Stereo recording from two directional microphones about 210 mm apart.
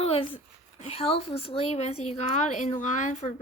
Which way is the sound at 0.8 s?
30° left (ahead or behind).